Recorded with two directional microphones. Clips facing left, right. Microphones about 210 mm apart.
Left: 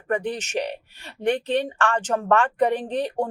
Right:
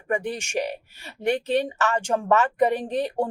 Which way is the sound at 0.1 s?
10° right (ahead or behind).